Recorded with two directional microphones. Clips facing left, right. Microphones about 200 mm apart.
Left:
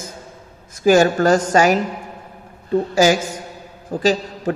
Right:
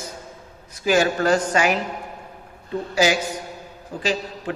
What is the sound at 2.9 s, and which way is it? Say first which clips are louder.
A man's voice: left 3 dB; 45° left (ahead or behind).